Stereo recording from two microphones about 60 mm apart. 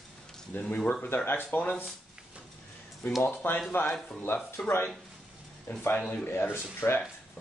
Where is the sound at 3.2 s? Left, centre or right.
Left.